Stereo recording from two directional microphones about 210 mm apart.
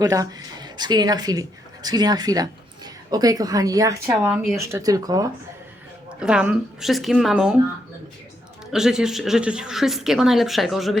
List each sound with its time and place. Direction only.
0.0 s speech: 15° right (ahead or behind)
4.6 s speech: 15° right (ahead or behind)
6.1 s speech: 5° right (ahead or behind)
8.7 s speech: 5° right (ahead or behind)